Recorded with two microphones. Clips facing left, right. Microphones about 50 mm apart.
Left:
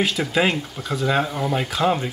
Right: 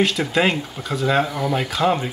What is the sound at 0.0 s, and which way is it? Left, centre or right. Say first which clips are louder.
Speech: right 2 dB; centre.